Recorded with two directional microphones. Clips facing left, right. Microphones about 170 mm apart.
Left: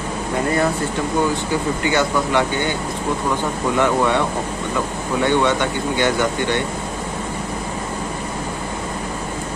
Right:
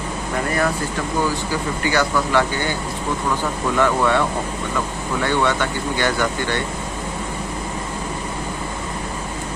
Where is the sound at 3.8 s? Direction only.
20° left (ahead or behind).